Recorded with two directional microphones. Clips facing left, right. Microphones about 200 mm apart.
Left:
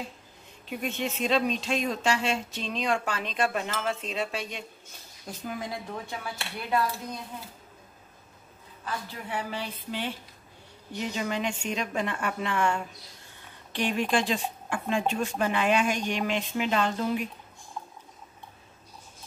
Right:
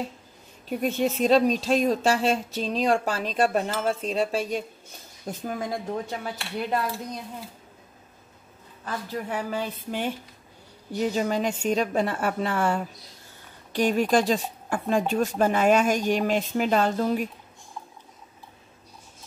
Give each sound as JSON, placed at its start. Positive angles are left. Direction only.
{"t": 0.7, "sound": "speech", "side_deg": -35}
{"t": 5.2, "sound": "speech", "side_deg": -45}
{"t": 8.8, "sound": "a woman's voice", "side_deg": -45}